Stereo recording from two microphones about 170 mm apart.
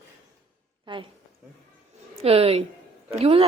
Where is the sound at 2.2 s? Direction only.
35° right (ahead or behind).